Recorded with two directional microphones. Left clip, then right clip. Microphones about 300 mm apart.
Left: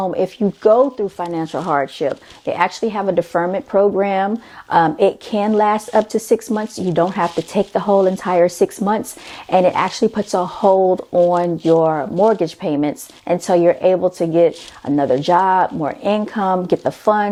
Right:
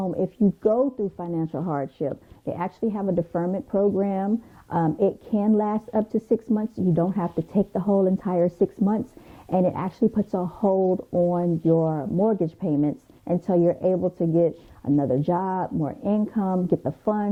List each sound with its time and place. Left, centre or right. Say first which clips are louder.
0.6 s speech: left 10 dB; centre
10.6 s speech: left 8 dB; left
11.3 s speech: left 8 dB; centre